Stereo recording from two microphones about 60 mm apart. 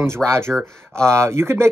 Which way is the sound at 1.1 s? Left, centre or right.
Right.